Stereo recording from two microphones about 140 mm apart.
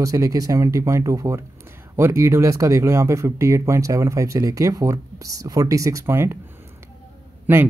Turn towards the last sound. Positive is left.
turn(degrees=-10)  # may be behind; listen again after turning